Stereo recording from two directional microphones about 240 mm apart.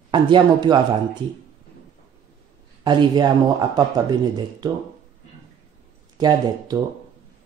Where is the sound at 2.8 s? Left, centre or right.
Centre.